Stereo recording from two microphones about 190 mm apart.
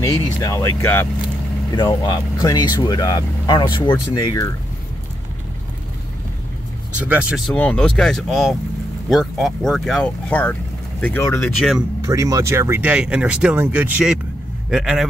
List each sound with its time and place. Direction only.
0.0 s speech: 15° left (ahead or behind)
7.0 s speech: 5° right (ahead or behind)
7.5 s speech: 5° left (ahead or behind)
12.0 s speech: 15° right (ahead or behind)